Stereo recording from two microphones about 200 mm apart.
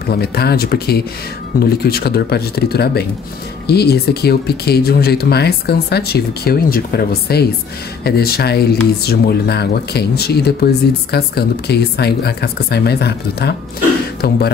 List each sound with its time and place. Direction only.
0.0 s speech: 50° left (ahead or behind)